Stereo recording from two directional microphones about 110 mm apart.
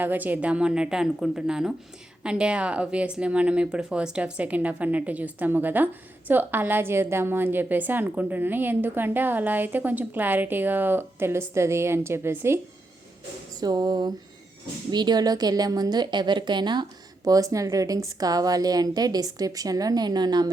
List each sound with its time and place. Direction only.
0.0 s speech: 15° right (ahead or behind)
13.6 s a woman's voice: 40° right (ahead or behind)
17.2 s a woman's voice: 30° right (ahead or behind)